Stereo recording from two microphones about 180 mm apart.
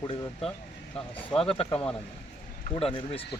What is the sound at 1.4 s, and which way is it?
Speech, 30° left (ahead or behind).